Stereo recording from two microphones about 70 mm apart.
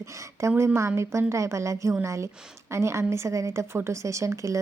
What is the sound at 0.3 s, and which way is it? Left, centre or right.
Speech, right.